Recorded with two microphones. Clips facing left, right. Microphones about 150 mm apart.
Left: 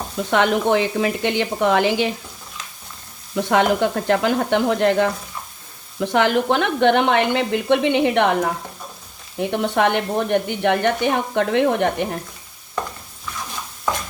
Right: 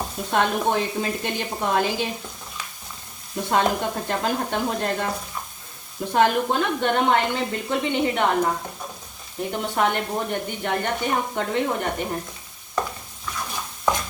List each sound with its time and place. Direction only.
0.3 s speech: 90° left
3.3 s a woman's voice: 85° left
9.4 s a woman's voice: 75° left (ahead or behind)